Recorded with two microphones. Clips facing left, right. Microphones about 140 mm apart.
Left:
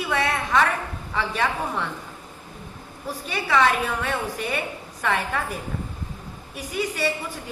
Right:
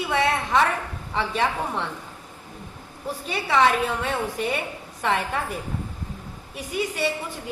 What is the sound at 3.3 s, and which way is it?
A woman's voice, 30° right (ahead or behind).